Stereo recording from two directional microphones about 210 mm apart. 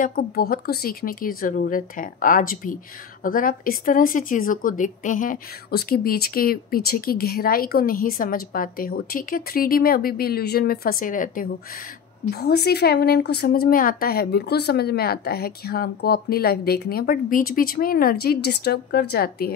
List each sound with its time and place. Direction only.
0.0 s a woman's voice: 45° left (ahead or behind)